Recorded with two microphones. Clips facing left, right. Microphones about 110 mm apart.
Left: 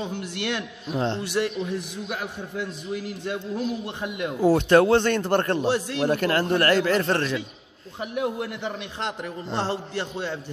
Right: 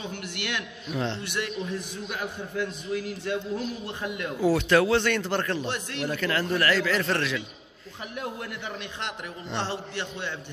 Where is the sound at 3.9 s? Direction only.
20° left (ahead or behind).